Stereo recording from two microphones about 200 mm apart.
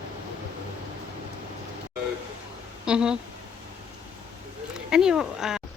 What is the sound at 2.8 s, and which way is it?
Speech, 5° right (ahead or behind).